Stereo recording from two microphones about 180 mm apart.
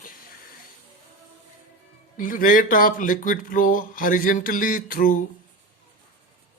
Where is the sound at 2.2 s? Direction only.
50° left (ahead or behind).